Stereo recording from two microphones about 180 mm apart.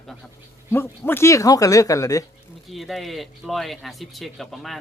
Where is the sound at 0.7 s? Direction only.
10° left (ahead or behind).